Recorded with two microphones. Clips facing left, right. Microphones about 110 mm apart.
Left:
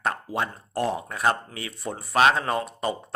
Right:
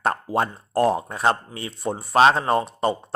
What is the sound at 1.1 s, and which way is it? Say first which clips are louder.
Speech: right 3 dB; 25° right (ahead or behind).